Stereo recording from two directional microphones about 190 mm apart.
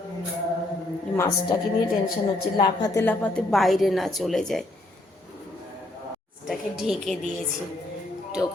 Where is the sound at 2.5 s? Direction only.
20° left (ahead or behind).